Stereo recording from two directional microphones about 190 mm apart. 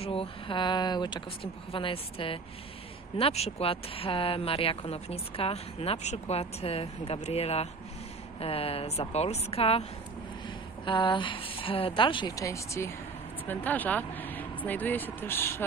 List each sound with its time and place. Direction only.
0.0 s speech: 30° left (ahead or behind)
10.9 s speech: 25° left (ahead or behind)